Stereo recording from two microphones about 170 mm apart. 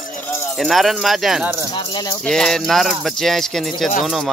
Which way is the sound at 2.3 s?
5° left (ahead or behind).